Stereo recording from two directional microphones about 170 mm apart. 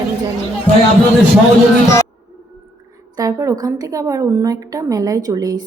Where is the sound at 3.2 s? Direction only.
20° right (ahead or behind).